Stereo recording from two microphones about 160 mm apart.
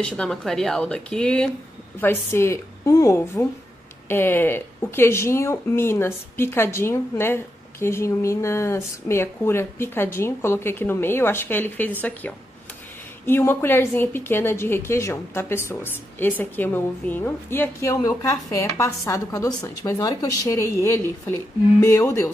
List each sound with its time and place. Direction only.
0.0 s a woman's voice: 5° left (ahead or behind)